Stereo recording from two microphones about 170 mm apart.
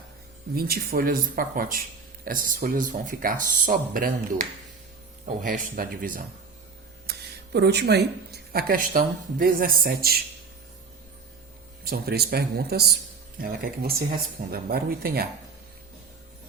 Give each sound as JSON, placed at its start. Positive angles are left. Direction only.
{"t": 0.5, "sound": "speech", "side_deg": -65}
{"t": 7.1, "sound": "speech", "side_deg": -70}
{"t": 11.9, "sound": "speech", "side_deg": -70}
{"t": 13.4, "sound": "speech", "side_deg": -55}